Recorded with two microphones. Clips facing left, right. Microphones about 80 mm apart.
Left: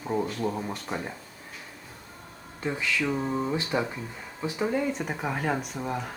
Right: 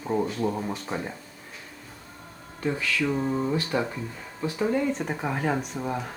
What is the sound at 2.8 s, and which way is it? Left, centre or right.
Mantra, left.